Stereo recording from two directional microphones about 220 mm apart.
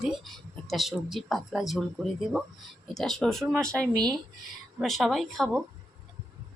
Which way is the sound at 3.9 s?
20° right (ahead or behind).